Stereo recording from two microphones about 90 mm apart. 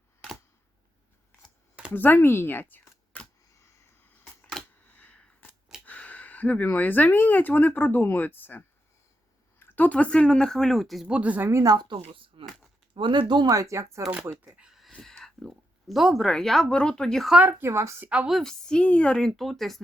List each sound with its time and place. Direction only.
1.9 s speech: 20° left (ahead or behind)
4.9 s a sound: 15° left (ahead or behind)
5.8 s speech: 15° left (ahead or behind); by 11.1 s centre (ahead or behind)
11.1 s a woman's voice: 15° right (ahead or behind)
11.6 s speech: 50° right (ahead or behind); by 12.5 s 75° right (ahead or behind)
12.9 s speech: 60° right (ahead or behind); by 14.0 s 35° right (ahead or behind)
14.6 s speech: centre (ahead or behind)
17.3 s speech: 20° right (ahead or behind)
17.7 s a woman's voice: 30° right (ahead or behind)
18.0 s a woman's voice: 15° right (ahead or behind)
18.3 s speech: 5° left (ahead or behind)